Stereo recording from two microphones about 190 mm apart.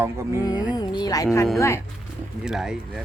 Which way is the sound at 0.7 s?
25° left (ahead or behind).